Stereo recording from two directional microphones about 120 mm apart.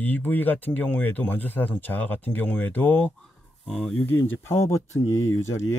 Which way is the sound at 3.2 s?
Centre (ahead or behind).